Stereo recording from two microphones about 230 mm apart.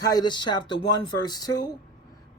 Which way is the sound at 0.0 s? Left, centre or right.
Centre.